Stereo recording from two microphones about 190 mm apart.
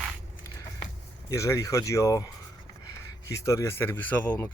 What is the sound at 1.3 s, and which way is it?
Speech, 15° left (ahead or behind).